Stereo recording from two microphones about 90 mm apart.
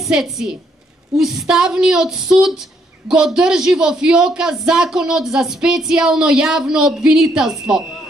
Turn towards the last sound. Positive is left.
turn(degrees=-5)  # may be behind; listen again after turning